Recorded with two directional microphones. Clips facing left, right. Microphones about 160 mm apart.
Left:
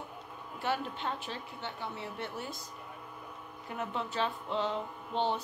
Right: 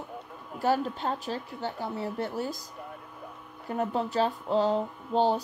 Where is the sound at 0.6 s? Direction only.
40° right (ahead or behind).